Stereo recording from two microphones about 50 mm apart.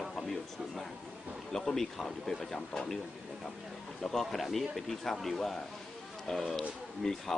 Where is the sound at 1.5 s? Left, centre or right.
Centre.